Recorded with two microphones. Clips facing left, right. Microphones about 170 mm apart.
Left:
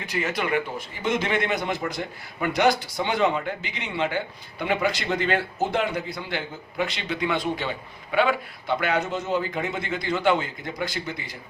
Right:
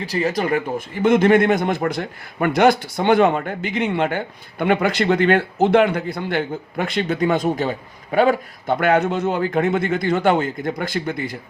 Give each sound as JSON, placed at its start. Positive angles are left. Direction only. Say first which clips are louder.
{"t": 0.0, "sound": "speech", "louder": "right 6 dB", "side_deg": -35}
{"t": 1.0, "sound": "a man's voice", "louder": "right 11 dB", "side_deg": -50}